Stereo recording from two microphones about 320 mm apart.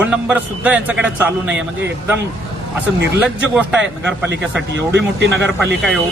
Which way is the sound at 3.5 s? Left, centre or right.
Centre.